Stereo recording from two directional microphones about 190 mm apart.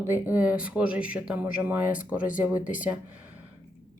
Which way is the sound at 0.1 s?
10° right (ahead or behind).